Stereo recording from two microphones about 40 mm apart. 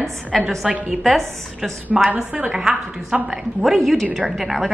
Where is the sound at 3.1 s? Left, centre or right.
Right.